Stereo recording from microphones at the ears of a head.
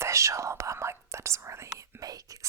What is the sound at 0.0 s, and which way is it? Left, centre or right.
Speech, right.